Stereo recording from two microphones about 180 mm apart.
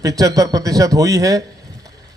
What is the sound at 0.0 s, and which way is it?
A man's voice, 20° right (ahead or behind).